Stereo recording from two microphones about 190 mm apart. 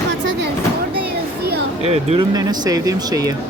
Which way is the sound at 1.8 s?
35° right (ahead or behind).